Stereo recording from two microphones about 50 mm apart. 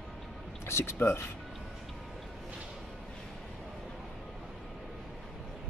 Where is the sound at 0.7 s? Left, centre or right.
Left.